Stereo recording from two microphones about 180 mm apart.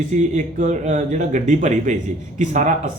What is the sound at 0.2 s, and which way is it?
Speech, 45° right (ahead or behind).